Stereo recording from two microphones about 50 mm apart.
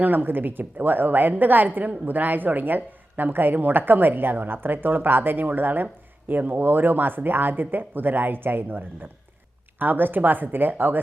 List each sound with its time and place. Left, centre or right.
0.0 s a woman's voice: right